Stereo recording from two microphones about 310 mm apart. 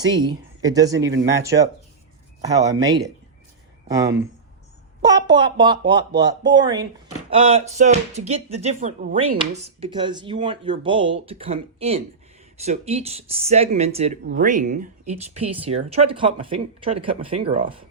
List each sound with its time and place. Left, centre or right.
0.3 s speech: centre